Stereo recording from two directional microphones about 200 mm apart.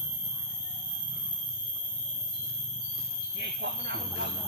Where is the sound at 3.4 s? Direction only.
55° right (ahead or behind).